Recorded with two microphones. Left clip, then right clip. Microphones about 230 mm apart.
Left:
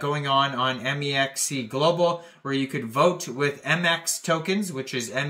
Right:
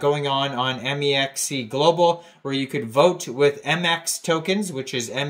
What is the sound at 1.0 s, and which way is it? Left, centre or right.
Speech, left.